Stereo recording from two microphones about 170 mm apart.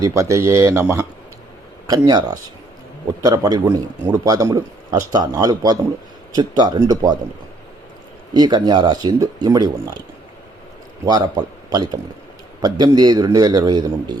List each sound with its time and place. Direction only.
0.0 s a man's voice: 20° right (ahead or behind)
8.3 s a man's voice: 25° right (ahead or behind)
11.0 s a man's voice: 25° right (ahead or behind)